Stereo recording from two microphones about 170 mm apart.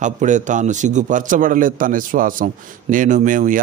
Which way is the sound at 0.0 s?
45° right (ahead or behind).